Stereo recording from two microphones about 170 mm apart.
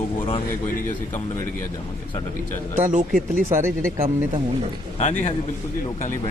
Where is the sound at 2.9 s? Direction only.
50° right (ahead or behind).